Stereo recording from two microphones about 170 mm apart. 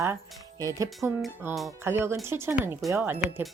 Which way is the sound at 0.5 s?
20° right (ahead or behind).